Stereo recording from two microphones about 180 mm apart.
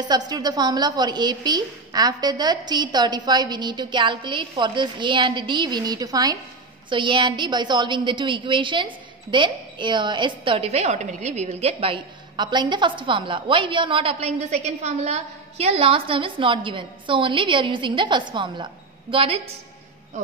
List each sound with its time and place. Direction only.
0.0 s a woman's voice: 25° right (ahead or behind)